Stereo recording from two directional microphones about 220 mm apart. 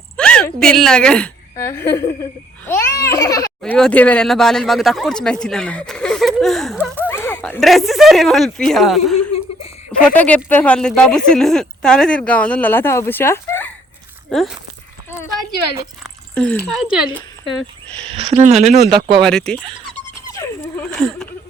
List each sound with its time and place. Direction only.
0.2 s a woman's voice: 5° left (ahead or behind)
2.6 s baby laughter: 10° left (ahead or behind)
3.6 s speech: 5° left (ahead or behind)
7.1 s speech: 10° left (ahead or behind)
16.3 s speech: 5° left (ahead or behind)
18.1 s speech: 25° right (ahead or behind)
19.2 s speech: 5° left (ahead or behind)
20.2 s dog: 15° left (ahead or behind)